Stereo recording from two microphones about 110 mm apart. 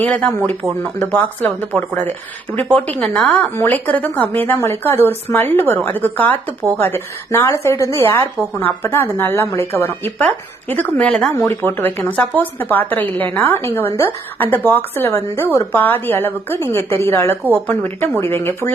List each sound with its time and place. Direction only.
0.0 s a woman's voice: 10° left (ahead or behind)